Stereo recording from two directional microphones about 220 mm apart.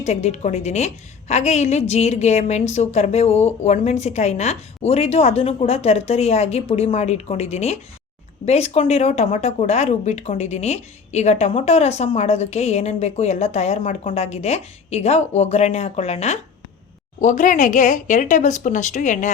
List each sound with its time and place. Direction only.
0.0 s speech: 30° left (ahead or behind)